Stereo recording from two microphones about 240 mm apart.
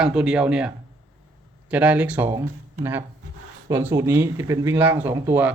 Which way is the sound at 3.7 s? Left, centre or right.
Centre.